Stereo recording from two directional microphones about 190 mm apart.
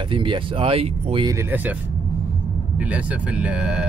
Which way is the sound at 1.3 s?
10° right (ahead or behind).